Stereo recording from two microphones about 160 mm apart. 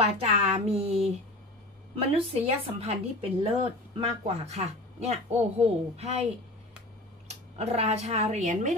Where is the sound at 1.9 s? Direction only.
35° right (ahead or behind).